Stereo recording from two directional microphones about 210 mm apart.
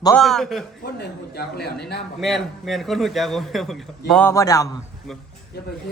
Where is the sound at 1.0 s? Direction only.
50° left (ahead or behind).